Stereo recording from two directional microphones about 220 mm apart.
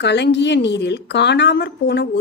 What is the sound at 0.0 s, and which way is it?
Speech, 50° left (ahead or behind).